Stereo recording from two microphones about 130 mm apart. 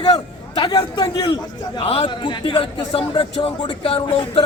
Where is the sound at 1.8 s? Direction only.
45° left (ahead or behind).